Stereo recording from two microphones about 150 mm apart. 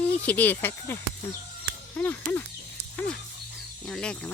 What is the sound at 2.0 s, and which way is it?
Speech, 10° left (ahead or behind).